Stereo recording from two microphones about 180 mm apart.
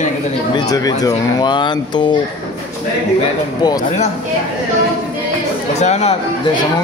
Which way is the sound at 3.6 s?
20° left (ahead or behind).